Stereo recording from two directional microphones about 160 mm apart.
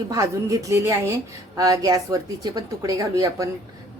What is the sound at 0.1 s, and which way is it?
A woman's voice, 20° right (ahead or behind).